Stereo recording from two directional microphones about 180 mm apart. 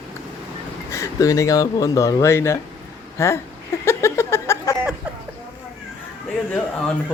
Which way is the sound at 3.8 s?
15° left (ahead or behind).